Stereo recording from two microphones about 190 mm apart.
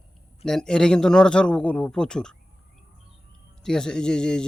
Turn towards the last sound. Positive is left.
turn(degrees=5)  # may be behind; listen again after turning